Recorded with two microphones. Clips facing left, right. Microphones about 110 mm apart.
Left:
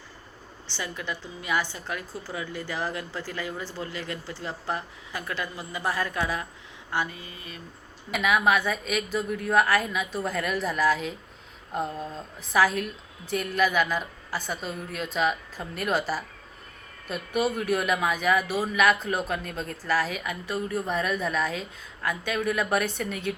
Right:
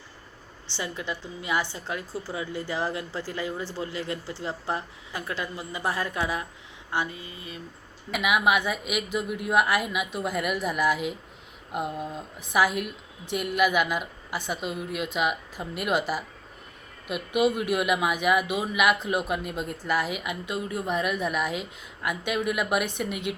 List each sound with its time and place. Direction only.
0.7 s speech: 20° right (ahead or behind)